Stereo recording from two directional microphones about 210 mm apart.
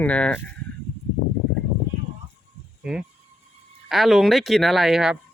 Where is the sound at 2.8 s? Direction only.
5° right (ahead or behind).